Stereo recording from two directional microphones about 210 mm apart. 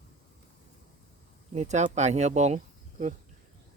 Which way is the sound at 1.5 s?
35° right (ahead or behind).